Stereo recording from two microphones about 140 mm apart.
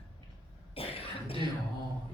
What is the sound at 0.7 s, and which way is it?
Cough, 45° left (ahead or behind).